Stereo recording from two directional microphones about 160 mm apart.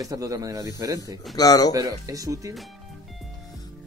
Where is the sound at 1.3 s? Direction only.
25° left (ahead or behind).